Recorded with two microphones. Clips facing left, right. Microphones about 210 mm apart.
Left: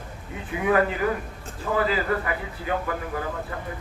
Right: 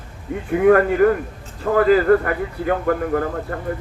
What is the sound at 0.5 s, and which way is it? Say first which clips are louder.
Speech: right 8 dB; 55° right (ahead or behind).